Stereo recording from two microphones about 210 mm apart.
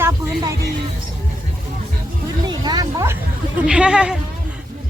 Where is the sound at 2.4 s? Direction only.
20° right (ahead or behind).